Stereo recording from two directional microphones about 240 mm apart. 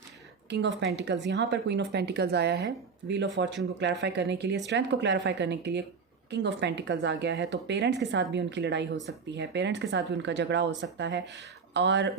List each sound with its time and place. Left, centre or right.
0.5 s speech: right